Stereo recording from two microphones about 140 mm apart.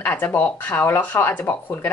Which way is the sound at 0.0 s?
10° left (ahead or behind).